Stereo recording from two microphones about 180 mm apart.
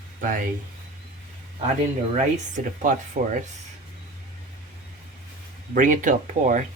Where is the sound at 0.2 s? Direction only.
50° right (ahead or behind).